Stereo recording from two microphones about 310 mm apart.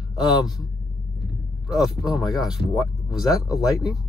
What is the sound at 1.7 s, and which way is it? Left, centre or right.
Speech, centre.